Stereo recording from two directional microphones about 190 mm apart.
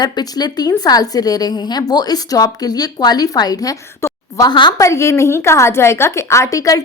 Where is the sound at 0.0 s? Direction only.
20° left (ahead or behind).